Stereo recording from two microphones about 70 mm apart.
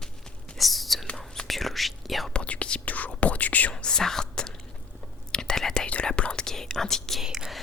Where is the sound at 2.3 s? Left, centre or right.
Centre.